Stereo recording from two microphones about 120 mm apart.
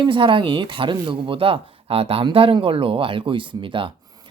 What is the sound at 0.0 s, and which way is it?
Speech, 45° right (ahead or behind).